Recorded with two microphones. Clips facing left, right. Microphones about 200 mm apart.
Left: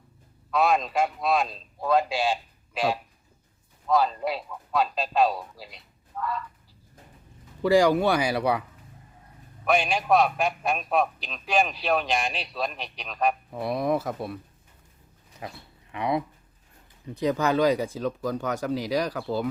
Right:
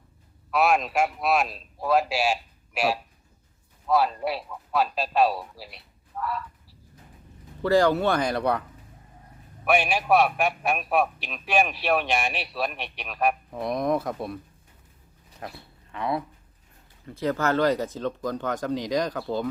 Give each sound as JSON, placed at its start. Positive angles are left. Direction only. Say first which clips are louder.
{"t": 0.5, "sound": "a man's voice", "louder": "right 1 dB", "side_deg": -5}
{"t": 7.6, "sound": "speech", "louder": "left 1 dB", "side_deg": 10}
{"t": 9.6, "sound": "a man's voice", "louder": "right 1 dB", "side_deg": 0}
{"t": 15.4, "sound": "a man's voice", "louder": "even", "side_deg": 5}
{"t": 15.9, "sound": "speech", "louder": "left 2 dB", "side_deg": 15}